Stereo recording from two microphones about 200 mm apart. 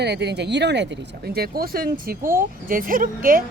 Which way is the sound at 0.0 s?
55° right (ahead or behind).